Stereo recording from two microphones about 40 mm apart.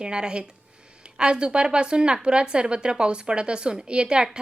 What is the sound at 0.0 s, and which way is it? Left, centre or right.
A woman's voice, right.